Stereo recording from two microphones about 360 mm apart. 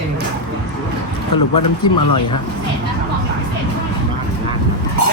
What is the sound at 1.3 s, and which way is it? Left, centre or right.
Speech, left.